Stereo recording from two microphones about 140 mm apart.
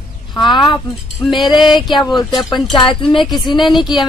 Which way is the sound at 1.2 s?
Centre (ahead or behind).